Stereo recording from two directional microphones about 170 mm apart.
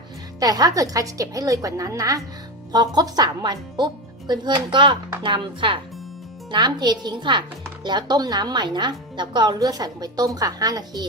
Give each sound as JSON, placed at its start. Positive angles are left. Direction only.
{"t": 0.3, "sound": "a woman's voice", "side_deg": -20}